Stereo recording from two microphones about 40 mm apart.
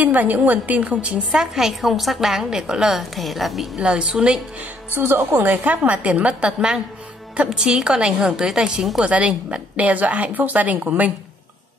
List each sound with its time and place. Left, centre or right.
0.0 s a woman's voice: right
1.0 s a woman's voice: right
1.4 s a woman's voice: centre
2.9 s a woman's voice: centre
3.8 s a woman's voice: right
4.9 s a woman's voice: right
5.3 s a woman's voice: right
7.4 s a woman's voice: centre
9.0 s a woman's voice: right